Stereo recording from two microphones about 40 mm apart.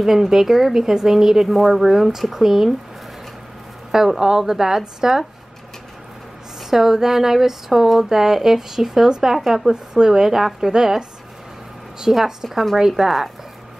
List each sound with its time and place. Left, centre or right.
0.0 s speech: centre
3.9 s speech: centre
6.7 s speech: centre
12.1 s speech: centre